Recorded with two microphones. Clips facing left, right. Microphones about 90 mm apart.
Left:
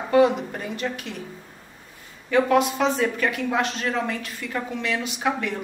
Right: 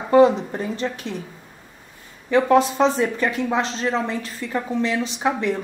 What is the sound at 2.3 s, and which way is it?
A woman's voice, 25° right (ahead or behind).